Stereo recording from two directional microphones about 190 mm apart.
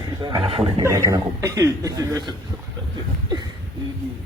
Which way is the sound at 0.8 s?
15° right (ahead or behind).